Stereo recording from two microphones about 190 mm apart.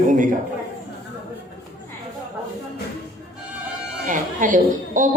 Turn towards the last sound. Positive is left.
turn(degrees=-45)  # may be behind; listen again after turning